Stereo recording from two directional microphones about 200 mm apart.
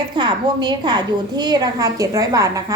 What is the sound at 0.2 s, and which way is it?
A woman's voice, 20° right (ahead or behind).